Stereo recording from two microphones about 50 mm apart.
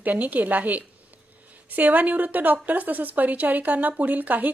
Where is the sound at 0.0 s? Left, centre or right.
Right.